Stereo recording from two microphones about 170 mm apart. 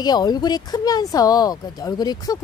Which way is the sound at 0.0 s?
25° left (ahead or behind).